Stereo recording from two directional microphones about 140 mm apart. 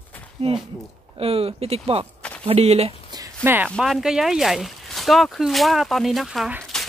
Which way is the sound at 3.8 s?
Centre (ahead or behind).